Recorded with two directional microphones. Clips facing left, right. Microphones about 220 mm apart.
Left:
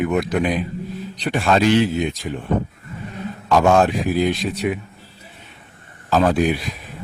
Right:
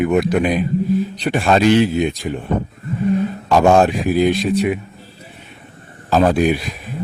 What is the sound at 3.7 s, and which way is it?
Speech, 15° right (ahead or behind).